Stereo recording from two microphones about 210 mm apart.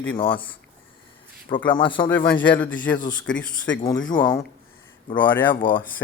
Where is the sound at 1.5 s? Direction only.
25° left (ahead or behind).